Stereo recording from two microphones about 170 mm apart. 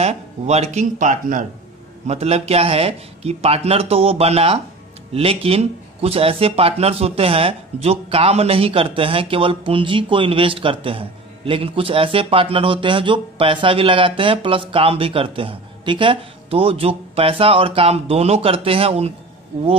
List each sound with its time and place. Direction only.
0.0 s speech: 40° right (ahead or behind)
2.0 s speech: 40° right (ahead or behind)